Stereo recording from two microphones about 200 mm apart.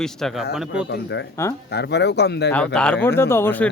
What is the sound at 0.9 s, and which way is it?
Speech, 60° left (ahead or behind).